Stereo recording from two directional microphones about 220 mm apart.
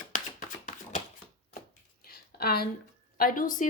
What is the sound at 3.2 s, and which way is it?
Speech, 40° left (ahead or behind).